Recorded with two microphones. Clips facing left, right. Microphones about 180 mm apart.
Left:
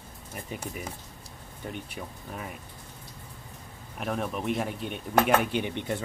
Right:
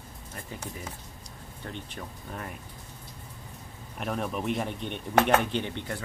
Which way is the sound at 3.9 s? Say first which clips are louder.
Even; centre (ahead or behind).